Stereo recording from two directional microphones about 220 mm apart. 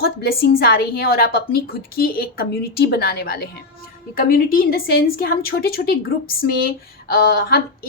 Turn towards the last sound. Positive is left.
turn(degrees=45)  # may be behind; listen again after turning